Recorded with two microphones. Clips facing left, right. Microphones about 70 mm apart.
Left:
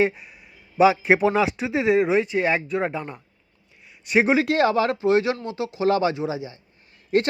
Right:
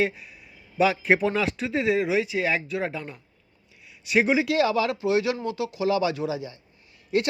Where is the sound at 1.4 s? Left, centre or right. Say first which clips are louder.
Left 4 dB; left.